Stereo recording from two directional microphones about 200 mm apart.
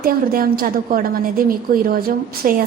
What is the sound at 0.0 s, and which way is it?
A woman's voice, 50° right (ahead or behind).